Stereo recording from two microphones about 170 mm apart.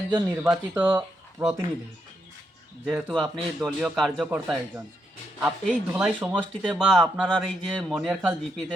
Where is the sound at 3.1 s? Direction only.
Centre (ahead or behind).